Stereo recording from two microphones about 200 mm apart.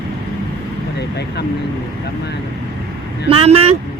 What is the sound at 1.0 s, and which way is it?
Speech, 55° left (ahead or behind).